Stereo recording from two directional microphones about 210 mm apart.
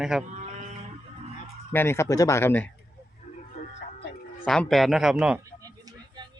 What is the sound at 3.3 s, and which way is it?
Vehicle, 35° left (ahead or behind).